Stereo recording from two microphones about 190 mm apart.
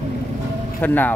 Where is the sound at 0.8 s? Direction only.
10° left (ahead or behind).